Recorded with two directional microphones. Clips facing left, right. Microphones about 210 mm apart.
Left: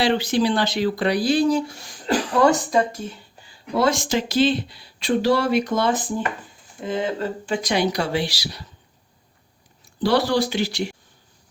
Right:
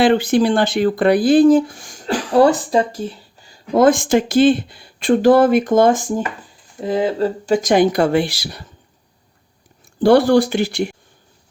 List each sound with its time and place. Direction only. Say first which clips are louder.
0.0 s speech: right 6 dB; 50° right (ahead or behind); by 3.1 s 30° right (ahead or behind)
3.5 s speech: right 8 dB; 50° right (ahead or behind)
10.0 s speech: right 8 dB; 50° right (ahead or behind)